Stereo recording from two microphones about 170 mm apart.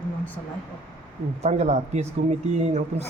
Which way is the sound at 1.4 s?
40° right (ahead or behind).